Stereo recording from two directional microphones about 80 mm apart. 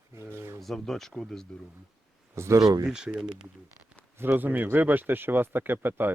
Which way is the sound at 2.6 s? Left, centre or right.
Right.